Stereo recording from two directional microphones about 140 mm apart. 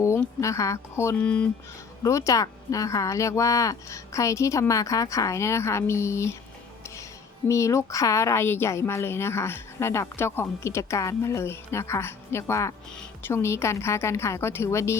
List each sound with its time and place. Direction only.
0.4 s a woman's voice: 20° left (ahead or behind)
2.0 s a woman's voice: 20° left (ahead or behind)